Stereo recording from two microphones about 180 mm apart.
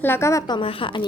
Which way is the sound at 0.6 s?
30° left (ahead or behind).